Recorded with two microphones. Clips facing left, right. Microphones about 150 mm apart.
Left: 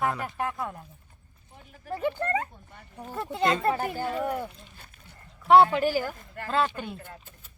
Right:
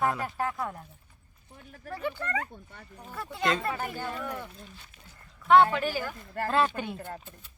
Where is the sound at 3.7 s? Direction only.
40° left (ahead or behind).